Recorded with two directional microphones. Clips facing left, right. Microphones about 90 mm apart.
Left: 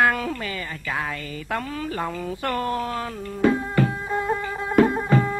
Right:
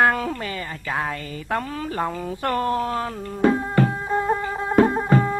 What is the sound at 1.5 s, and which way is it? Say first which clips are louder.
Speech: right 2 dB; 35° right (ahead or behind).